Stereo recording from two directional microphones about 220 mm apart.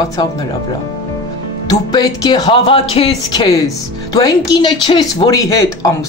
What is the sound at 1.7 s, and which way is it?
Speech, 15° left (ahead or behind).